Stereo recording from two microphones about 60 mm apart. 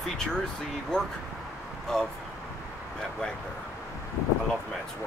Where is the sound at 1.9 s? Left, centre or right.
Centre.